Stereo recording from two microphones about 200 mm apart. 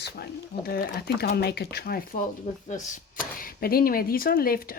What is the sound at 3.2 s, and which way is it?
Speech, 45° left (ahead or behind).